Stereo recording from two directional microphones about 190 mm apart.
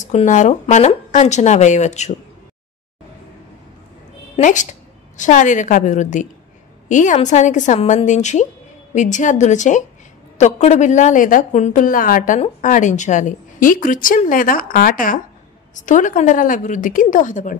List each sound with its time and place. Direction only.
0.0 s speech: 40° left (ahead or behind)
4.4 s a woman's voice: 40° left (ahead or behind)